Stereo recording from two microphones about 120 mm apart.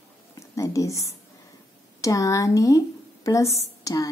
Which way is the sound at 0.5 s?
25° left (ahead or behind).